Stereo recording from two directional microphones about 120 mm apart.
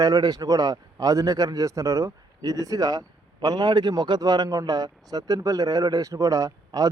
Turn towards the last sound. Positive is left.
turn(degrees=-30)  # may be behind; listen again after turning